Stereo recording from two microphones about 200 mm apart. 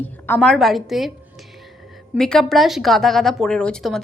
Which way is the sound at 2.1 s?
5° left (ahead or behind).